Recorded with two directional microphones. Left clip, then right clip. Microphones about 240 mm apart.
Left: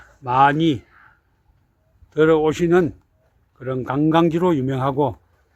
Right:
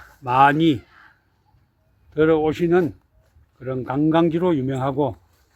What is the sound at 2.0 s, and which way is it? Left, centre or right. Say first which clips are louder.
A man's voice: left 2 dB; centre.